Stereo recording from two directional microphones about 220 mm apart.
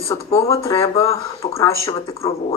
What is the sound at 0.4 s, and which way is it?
Speech, 15° left (ahead or behind).